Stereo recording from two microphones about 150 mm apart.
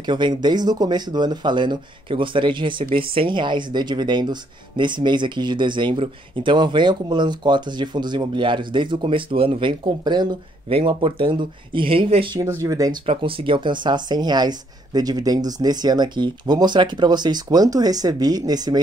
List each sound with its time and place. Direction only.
0.0 s speech: 30° right (ahead or behind)
12.4 s speech: 20° right (ahead or behind)
13.0 s speech: 40° right (ahead or behind)